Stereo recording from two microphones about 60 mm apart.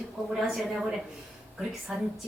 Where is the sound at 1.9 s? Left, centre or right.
Centre.